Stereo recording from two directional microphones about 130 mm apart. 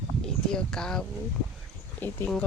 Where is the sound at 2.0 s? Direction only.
15° left (ahead or behind).